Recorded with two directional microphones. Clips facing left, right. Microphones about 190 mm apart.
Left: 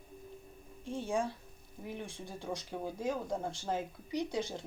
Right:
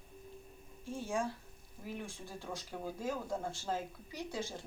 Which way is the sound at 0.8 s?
20° left (ahead or behind).